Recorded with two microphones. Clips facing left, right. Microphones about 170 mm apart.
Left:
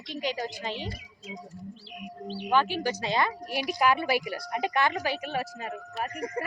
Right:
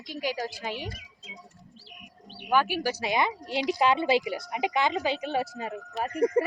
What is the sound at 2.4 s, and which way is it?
Speech, 10° right (ahead or behind).